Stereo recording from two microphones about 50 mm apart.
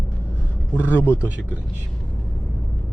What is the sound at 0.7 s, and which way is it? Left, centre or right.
Speech, left.